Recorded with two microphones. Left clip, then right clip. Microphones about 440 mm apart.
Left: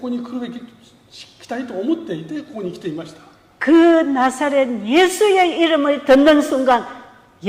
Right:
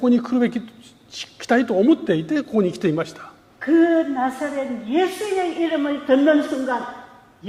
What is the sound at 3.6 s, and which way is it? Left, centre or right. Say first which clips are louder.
A woman's voice: left 5 dB; left.